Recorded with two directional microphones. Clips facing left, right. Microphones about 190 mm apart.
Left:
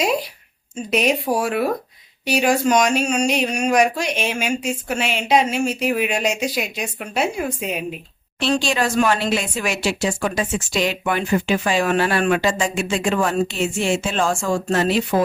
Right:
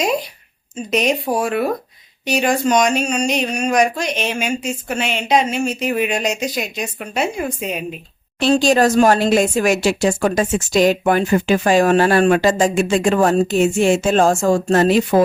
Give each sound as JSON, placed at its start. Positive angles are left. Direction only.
{"t": 0.9, "sound": "speech", "side_deg": 5}
{"t": 8.4, "sound": "speech", "side_deg": -45}